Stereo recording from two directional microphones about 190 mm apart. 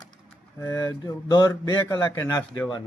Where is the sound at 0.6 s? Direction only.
20° left (ahead or behind).